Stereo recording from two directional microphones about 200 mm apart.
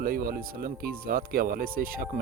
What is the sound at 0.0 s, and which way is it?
Speech, 45° right (ahead or behind).